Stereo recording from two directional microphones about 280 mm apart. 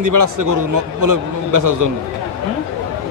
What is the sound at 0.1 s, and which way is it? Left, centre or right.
Speech, right.